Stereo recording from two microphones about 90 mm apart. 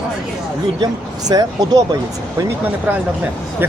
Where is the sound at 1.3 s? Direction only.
45° right (ahead or behind).